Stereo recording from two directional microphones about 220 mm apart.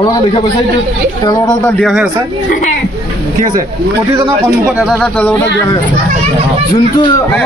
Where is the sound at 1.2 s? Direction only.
15° left (ahead or behind).